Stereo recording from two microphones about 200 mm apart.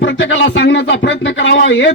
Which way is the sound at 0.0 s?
65° left (ahead or behind).